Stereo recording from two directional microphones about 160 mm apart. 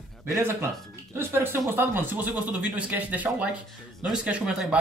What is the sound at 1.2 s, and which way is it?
A man's voice, 15° right (ahead or behind).